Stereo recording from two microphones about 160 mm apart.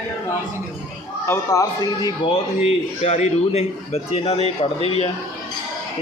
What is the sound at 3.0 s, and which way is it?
A man's voice, 45° left (ahead or behind).